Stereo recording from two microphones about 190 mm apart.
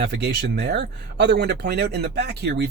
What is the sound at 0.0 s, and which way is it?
Speech, 60° right (ahead or behind).